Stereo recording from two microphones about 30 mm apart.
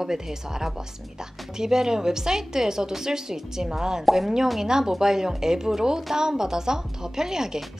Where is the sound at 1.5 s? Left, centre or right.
Centre.